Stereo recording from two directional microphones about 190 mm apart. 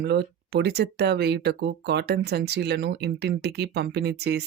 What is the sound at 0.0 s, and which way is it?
Speech, 60° right (ahead or behind).